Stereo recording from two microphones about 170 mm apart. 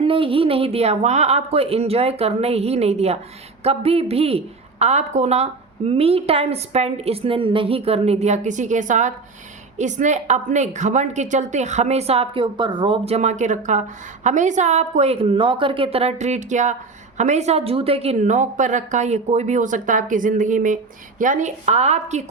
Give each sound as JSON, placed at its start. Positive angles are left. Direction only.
{"t": 0.0, "sound": "a woman's voice", "side_deg": -30}